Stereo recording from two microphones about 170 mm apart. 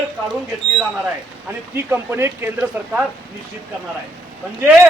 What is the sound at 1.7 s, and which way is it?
A man's voice, 15° right (ahead or behind).